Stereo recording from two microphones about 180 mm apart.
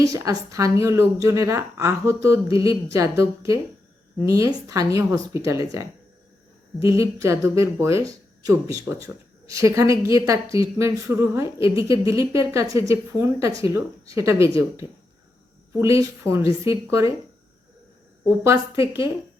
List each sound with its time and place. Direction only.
0.0 s a woman's voice: 20° right (ahead or behind)
6.8 s a woman's voice: 15° right (ahead or behind)
18.4 s a woman's voice: 15° right (ahead or behind)